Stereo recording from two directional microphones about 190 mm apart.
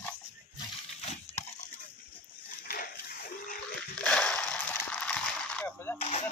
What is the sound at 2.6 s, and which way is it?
Water, 50° left (ahead or behind).